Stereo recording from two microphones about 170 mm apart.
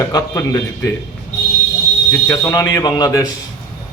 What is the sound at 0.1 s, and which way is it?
Speech, 20° left (ahead or behind).